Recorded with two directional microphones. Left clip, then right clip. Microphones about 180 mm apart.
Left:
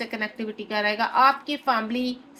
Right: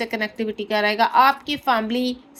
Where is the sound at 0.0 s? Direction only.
50° right (ahead or behind).